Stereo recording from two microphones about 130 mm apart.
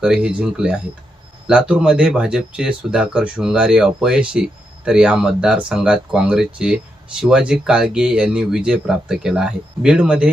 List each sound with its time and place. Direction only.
0.0 s speech: 5° right (ahead or behind)